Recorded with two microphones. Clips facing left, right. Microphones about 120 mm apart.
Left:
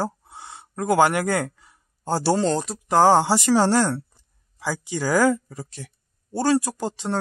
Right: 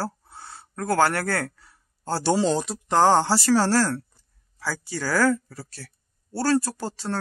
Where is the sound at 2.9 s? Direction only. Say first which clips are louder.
Left 2 dB; 10° left (ahead or behind).